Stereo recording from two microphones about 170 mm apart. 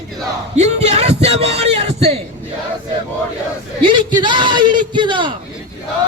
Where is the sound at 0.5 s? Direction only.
40° right (ahead or behind).